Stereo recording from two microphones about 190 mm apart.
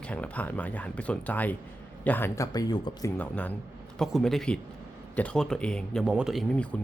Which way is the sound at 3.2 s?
10° left (ahead or behind).